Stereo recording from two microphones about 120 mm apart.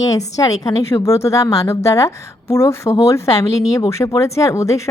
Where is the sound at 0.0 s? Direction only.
30° left (ahead or behind).